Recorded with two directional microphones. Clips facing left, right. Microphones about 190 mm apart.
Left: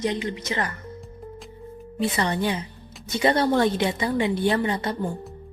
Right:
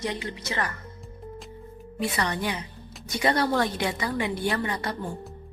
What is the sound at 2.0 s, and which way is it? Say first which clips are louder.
A woman's voice: left 4 dB; 25° left (ahead or behind).